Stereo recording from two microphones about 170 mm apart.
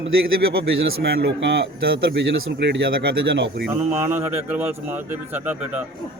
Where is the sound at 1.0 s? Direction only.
85° right.